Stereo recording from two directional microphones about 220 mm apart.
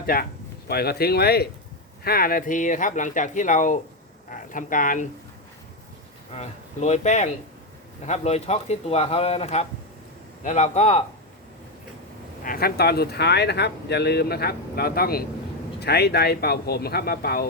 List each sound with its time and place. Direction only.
0.0 s speech: 40° left (ahead or behind)
6.3 s speech: 30° left (ahead or behind)
12.4 s speech: 40° left (ahead or behind)